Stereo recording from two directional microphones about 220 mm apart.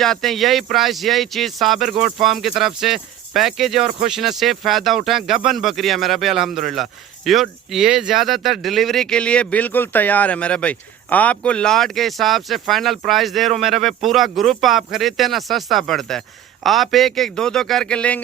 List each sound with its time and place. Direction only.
0.0 s speech: centre (ahead or behind)